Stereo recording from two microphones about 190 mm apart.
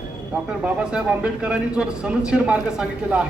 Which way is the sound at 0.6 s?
5° right (ahead or behind).